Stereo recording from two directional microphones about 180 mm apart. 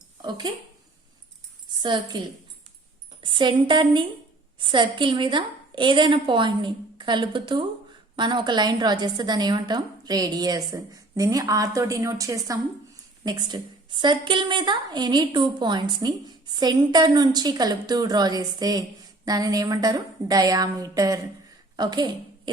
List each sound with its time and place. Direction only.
0.2 s speech: 25° right (ahead or behind)
1.8 s a woman's voice: 25° right (ahead or behind)